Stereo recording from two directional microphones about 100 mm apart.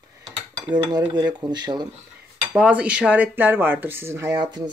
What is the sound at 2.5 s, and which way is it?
Speech, 10° right (ahead or behind).